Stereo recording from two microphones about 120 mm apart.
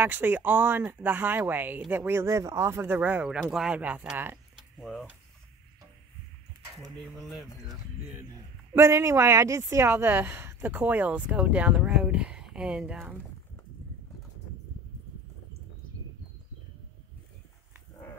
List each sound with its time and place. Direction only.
0.0 s speech: 15° right (ahead or behind)
4.6 s a sound: centre (ahead or behind)
7.0 s speech: centre (ahead or behind)
8.7 s speech: 20° right (ahead or behind)